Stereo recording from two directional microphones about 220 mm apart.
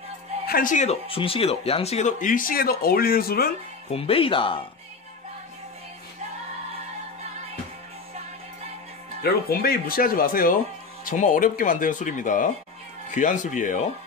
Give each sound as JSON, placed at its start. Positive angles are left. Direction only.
{"t": 0.5, "sound": "speech", "side_deg": 40}
{"t": 3.9, "sound": "speech", "side_deg": 25}
{"t": 9.2, "sound": "speech", "side_deg": 45}